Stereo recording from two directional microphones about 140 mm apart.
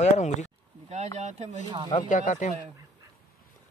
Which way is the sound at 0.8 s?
55° right (ahead or behind).